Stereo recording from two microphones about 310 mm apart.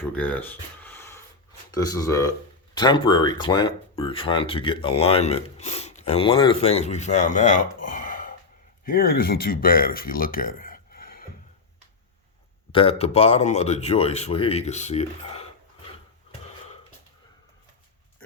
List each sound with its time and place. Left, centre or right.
0.0 s speech: centre; by 7.6 s left
7.9 s a sound: left
8.8 s speech: left
12.7 s speech: centre